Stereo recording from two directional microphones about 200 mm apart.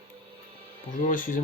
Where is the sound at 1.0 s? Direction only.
40° left (ahead or behind).